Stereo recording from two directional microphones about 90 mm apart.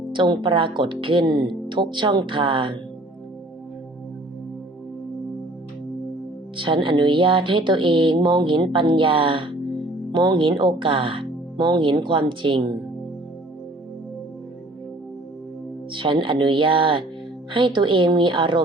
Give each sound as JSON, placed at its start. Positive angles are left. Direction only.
{"t": 0.1, "sound": "speech", "side_deg": -60}
{"t": 6.6, "sound": "speech", "side_deg": -70}
{"t": 10.1, "sound": "speech", "side_deg": -60}
{"t": 15.9, "sound": "speech", "side_deg": -65}